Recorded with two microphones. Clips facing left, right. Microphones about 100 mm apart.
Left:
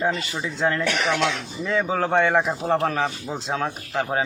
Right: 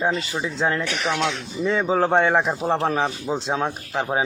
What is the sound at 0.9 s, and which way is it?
Speech, 90° left.